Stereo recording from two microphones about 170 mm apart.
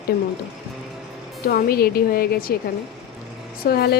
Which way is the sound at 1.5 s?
65° left (ahead or behind).